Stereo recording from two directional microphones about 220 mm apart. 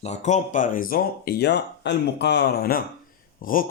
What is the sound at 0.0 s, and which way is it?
Speech, 30° left (ahead or behind).